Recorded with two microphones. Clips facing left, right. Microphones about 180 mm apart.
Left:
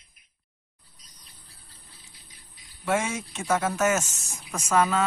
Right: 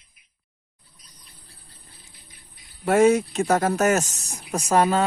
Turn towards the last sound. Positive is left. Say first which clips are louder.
# right 4 dB
turn(degrees=-35)  # may be behind; listen again after turning